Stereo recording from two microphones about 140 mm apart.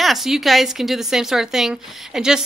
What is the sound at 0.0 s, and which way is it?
A woman's voice, centre (ahead or behind).